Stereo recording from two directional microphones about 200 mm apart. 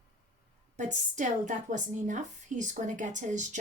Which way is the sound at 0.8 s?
40° right (ahead or behind).